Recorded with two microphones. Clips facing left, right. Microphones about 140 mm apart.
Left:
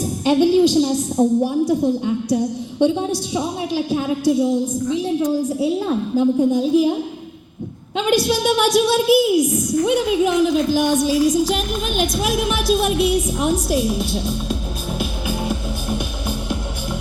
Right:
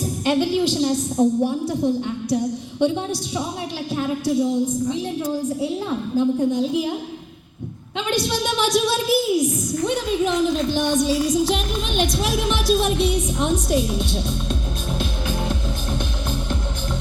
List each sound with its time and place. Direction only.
0.3 s a woman's voice: 15° left (ahead or behind)
5.5 s a woman's voice: 10° left (ahead or behind)
7.9 s a woman's voice: 5° left (ahead or behind)
14.9 s music: 5° left (ahead or behind)